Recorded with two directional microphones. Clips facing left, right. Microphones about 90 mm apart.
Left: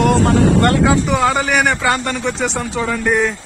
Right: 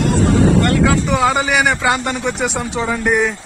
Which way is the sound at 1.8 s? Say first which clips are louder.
Even; 15° right (ahead or behind).